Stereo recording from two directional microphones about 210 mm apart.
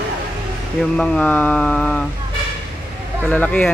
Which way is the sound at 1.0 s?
5° left (ahead or behind).